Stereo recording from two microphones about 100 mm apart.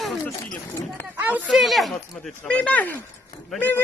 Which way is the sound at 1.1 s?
20° right (ahead or behind).